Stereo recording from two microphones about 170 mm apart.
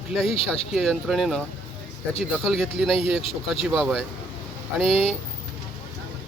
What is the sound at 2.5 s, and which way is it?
Speech, centre (ahead or behind).